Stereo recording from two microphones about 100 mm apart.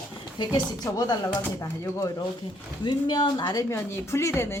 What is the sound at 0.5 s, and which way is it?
A woman's voice, 40° left (ahead or behind).